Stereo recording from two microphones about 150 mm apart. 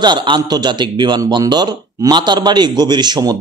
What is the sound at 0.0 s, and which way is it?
A man's voice, 30° right (ahead or behind).